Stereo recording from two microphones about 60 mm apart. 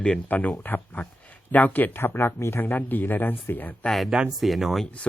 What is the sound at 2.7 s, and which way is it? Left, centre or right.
Speech, left.